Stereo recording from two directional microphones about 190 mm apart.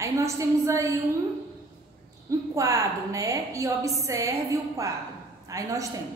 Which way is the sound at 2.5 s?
15° right (ahead or behind).